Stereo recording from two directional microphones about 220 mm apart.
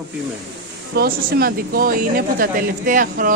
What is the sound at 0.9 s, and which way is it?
Speech, 45° right (ahead or behind).